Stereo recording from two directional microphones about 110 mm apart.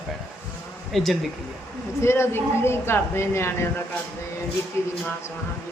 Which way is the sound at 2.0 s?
25° left (ahead or behind).